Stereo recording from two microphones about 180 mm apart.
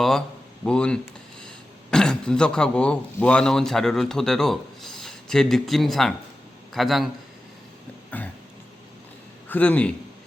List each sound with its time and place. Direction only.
0.0 s a man's voice: 5° left (ahead or behind)
8.1 s a man's voice: 10° left (ahead or behind)
9.5 s a man's voice: 10° left (ahead or behind)